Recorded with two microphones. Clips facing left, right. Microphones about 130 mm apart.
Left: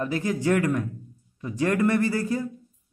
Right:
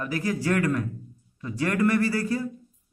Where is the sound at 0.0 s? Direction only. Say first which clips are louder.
Left 2 dB; 25° left (ahead or behind).